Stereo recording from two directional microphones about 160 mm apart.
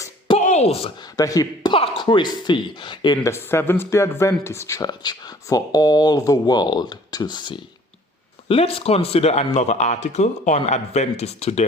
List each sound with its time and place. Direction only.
0.3 s a sound: 45° left (ahead or behind)
1.1 s speech: 20° left (ahead or behind)
1.7 s speech: 30° left (ahead or behind)
3.3 s speech: 15° left (ahead or behind); by 11.6 s 40° left (ahead or behind)